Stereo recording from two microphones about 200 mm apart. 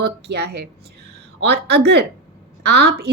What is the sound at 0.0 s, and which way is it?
Speech, 55° right (ahead or behind).